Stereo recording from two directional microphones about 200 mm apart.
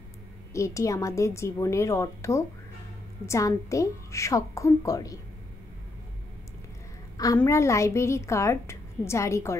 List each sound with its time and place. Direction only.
0.5 s a woman's voice: 15° left (ahead or behind)
7.2 s a woman's voice: 15° left (ahead or behind)